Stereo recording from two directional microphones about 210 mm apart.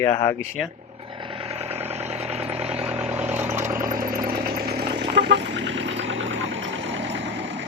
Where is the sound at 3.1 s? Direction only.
10° right (ahead or behind).